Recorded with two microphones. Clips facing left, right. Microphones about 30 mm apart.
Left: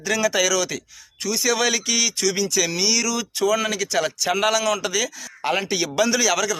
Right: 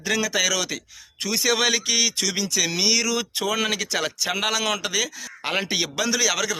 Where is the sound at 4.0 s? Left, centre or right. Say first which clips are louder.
Left 4 dB; centre.